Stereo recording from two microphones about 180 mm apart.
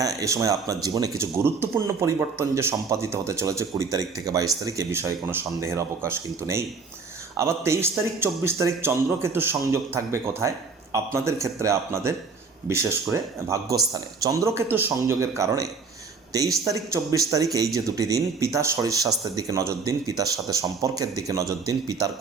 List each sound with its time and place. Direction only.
0.0 s speech: 20° right (ahead or behind)